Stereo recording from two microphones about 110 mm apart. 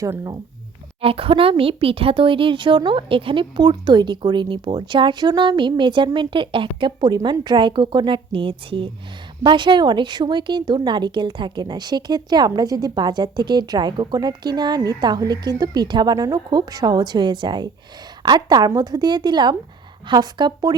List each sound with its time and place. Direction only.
0.0 s a woman's voice: 30° right (ahead or behind)
1.0 s a woman's voice: 55° right (ahead or behind); by 20.7 s 35° right (ahead or behind)